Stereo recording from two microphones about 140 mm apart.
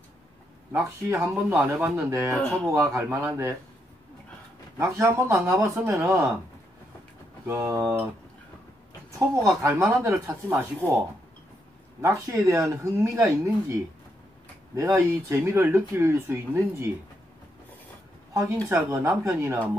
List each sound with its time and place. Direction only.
0.7 s speech: 20° right (ahead or behind)
2.3 s speech: centre (ahead or behind)
2.7 s speech: 20° right (ahead or behind)
4.7 s speech: 20° right (ahead or behind)
7.4 s speech: 20° right (ahead or behind)
9.6 s speech: 20° right (ahead or behind)
12.0 s speech: 20° right (ahead or behind)
14.8 s speech: 20° right (ahead or behind)
18.3 s speech: 20° right (ahead or behind)